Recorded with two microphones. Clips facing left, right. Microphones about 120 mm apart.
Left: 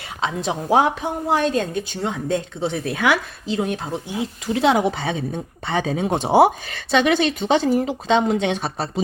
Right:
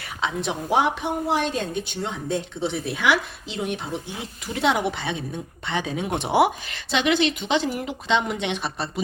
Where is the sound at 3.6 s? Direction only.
35° left (ahead or behind).